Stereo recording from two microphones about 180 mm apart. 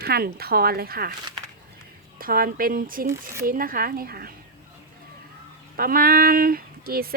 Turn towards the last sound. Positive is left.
turn(degrees=-55)  # may be behind; listen again after turning